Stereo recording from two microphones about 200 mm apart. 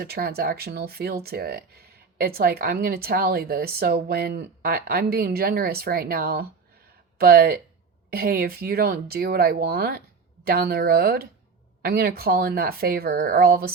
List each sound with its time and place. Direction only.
0.0 s speech: 50° right (ahead or behind)